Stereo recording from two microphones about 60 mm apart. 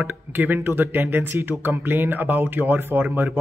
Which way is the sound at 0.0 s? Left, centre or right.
Right.